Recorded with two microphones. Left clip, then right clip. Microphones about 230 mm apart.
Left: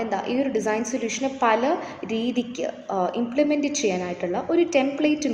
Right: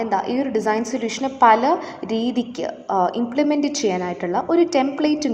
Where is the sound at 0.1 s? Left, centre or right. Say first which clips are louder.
Right 4 dB; centre.